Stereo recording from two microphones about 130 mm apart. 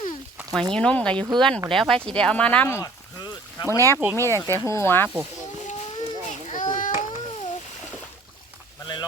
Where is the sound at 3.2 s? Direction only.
35° left (ahead or behind).